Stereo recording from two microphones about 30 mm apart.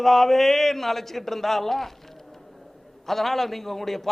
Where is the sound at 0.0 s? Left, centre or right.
Centre.